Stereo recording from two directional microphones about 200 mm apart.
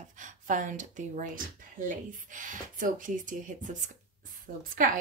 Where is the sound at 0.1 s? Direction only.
40° right (ahead or behind).